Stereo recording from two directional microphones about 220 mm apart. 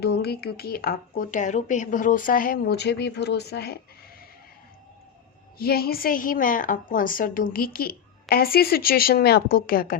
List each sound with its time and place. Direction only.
0.0 s speech: 45° left (ahead or behind)
5.5 s a woman's voice: 45° left (ahead or behind)